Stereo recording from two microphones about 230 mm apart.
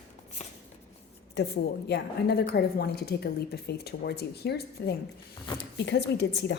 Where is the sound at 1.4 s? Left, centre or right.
Left.